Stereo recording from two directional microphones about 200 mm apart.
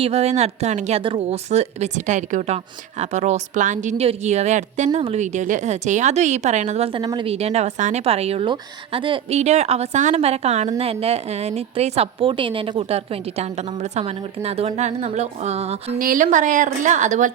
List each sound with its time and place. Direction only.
0.0 s speech: 30° right (ahead or behind)